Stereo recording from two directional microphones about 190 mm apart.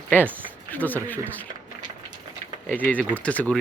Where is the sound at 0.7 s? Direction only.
10° left (ahead or behind).